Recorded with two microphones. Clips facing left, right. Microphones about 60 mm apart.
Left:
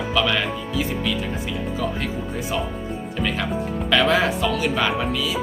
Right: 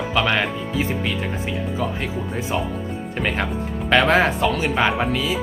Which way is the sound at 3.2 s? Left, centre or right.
Right.